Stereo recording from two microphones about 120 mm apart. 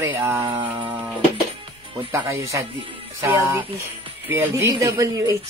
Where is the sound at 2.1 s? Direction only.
25° right (ahead or behind).